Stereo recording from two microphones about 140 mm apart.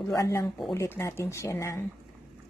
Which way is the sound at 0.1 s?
20° left (ahead or behind).